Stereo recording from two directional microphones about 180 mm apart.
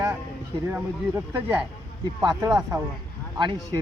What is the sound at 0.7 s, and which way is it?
Speech, 15° right (ahead or behind).